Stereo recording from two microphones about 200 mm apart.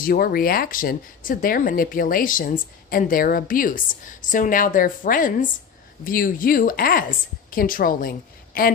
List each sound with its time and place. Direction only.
0.0 s speech: 45° left (ahead or behind)